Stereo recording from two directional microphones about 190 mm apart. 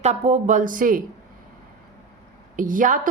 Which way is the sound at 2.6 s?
45° right (ahead or behind).